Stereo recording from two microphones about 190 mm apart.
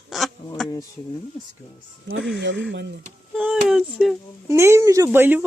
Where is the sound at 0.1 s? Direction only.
Centre (ahead or behind).